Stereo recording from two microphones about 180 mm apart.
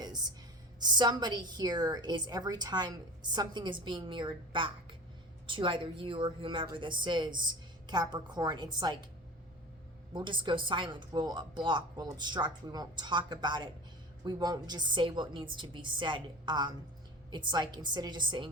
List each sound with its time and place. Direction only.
0.0 s a sound: 25° right (ahead or behind)
0.8 s a woman's voice: 25° right (ahead or behind)
10.1 s a woman's voice: 25° right (ahead or behind)